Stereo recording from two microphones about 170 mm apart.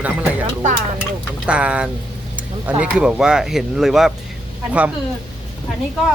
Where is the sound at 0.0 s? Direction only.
10° right (ahead or behind).